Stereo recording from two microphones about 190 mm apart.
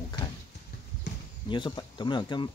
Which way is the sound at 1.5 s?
25° left (ahead or behind).